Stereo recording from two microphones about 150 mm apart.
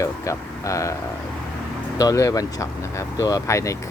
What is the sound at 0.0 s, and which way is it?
Speech, 20° left (ahead or behind).